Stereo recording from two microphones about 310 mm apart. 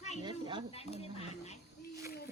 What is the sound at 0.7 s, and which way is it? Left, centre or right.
Speech, centre.